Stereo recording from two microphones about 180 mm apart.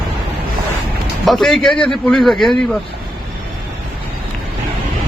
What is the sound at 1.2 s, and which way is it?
A man's voice, centre (ahead or behind).